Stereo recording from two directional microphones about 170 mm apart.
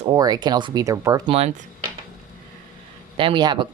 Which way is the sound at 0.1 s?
25° right (ahead or behind).